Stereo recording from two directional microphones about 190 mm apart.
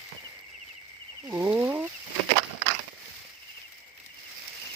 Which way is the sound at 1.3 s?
10° right (ahead or behind).